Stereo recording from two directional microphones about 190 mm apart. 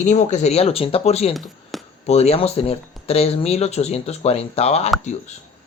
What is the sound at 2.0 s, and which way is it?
Speech, 35° left (ahead or behind).